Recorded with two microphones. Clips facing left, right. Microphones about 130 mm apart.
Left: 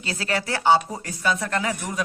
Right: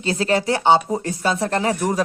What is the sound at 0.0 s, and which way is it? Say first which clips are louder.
Speech: right 7 dB; 25° right (ahead or behind).